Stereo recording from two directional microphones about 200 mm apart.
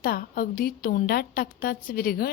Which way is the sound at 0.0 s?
45° left (ahead or behind).